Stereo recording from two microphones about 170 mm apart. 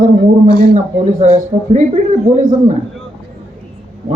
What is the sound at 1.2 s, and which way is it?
Speech, 45° right (ahead or behind).